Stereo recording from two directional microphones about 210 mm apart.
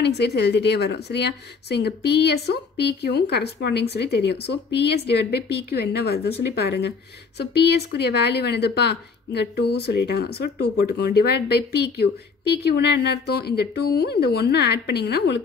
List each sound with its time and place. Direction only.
0.0 s speech: 55° left (ahead or behind)